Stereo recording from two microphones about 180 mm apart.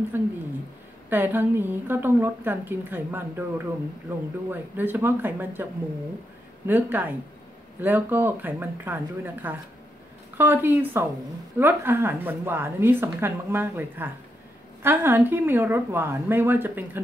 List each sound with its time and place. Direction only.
0.1 s a woman's voice: 10° right (ahead or behind)
6.7 s a woman's voice: 10° right (ahead or behind)